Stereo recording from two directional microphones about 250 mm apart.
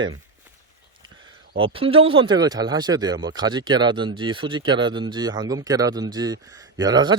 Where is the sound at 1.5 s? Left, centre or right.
Right.